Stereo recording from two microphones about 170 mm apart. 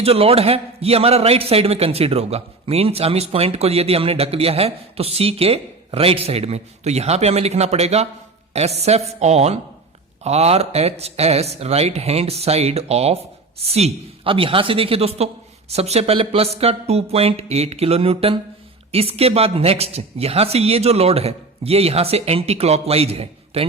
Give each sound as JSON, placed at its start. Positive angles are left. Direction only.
{"t": 0.0, "sound": "a man's voice", "side_deg": -35}